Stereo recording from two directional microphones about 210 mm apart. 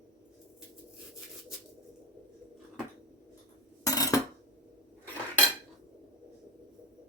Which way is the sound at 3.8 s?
15° left (ahead or behind).